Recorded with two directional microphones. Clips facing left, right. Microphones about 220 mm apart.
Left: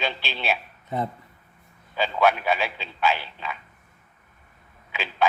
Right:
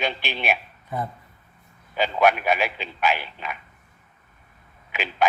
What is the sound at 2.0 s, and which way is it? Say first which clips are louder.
A man's voice: right 2 dB; 15° right (ahead or behind).